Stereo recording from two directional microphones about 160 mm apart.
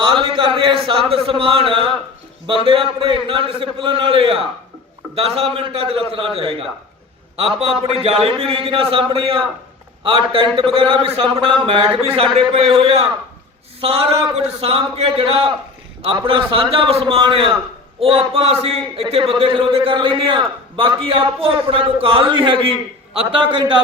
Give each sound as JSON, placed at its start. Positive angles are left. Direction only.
{"t": 0.0, "sound": "a man's voice", "side_deg": -30}